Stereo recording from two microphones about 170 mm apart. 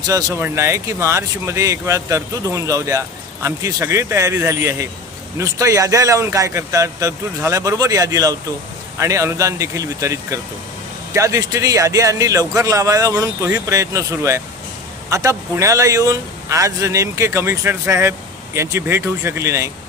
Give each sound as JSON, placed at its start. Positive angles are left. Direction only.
{"t": 0.1, "sound": "speech", "side_deg": -20}